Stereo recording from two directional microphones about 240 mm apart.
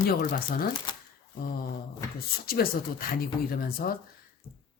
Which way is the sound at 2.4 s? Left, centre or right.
Left.